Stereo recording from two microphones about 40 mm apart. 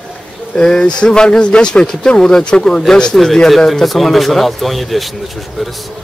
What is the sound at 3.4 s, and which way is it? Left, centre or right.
A man's voice, centre.